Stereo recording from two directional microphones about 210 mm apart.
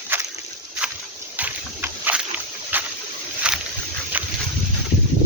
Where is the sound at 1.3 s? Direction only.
10° right (ahead or behind).